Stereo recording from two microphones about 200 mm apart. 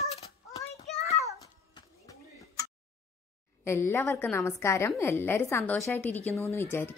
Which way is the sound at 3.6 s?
15° left (ahead or behind).